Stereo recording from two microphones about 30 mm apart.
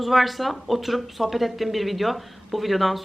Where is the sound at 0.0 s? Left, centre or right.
Centre.